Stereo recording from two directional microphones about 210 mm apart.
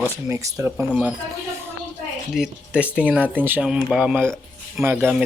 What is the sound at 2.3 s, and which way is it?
Speech, 5° right (ahead or behind).